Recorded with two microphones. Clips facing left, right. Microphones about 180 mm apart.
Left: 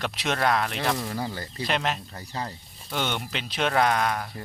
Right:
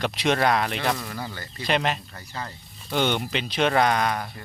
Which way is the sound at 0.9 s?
30° left (ahead or behind).